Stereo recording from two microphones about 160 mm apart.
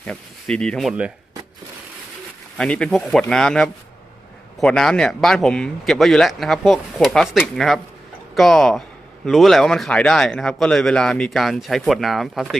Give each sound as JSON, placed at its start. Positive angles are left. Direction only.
{"t": 0.0, "sound": "speech", "side_deg": 5}
{"t": 2.6, "sound": "speech", "side_deg": 5}